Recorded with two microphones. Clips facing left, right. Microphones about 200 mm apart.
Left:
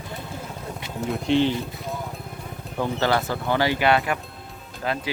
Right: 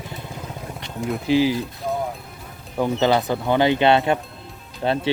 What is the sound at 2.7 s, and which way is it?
Speech, 15° right (ahead or behind).